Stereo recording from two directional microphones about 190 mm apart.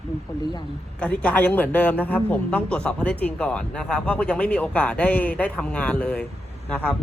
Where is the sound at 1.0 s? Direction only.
5° left (ahead or behind).